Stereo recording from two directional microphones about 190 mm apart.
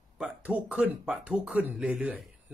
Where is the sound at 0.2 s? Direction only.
5° right (ahead or behind).